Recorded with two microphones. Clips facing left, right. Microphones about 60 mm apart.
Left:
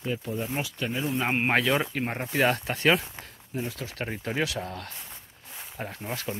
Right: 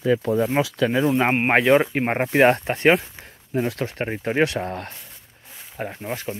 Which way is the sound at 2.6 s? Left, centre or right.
Right.